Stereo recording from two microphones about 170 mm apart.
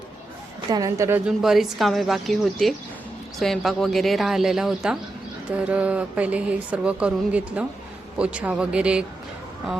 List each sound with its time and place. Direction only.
0.7 s a woman's voice: 20° right (ahead or behind)
1.4 s a woman's voice: centre (ahead or behind)